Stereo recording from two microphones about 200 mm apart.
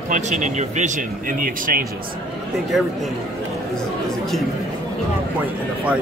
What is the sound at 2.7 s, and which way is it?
Speech, centre (ahead or behind).